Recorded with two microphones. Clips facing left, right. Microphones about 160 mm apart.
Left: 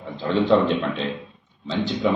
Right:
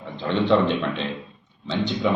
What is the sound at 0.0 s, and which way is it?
A man's voice, 5° left (ahead or behind).